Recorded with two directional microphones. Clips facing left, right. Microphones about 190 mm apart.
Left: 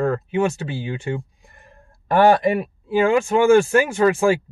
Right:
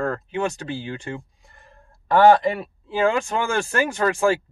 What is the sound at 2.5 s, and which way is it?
Speech, 10° left (ahead or behind).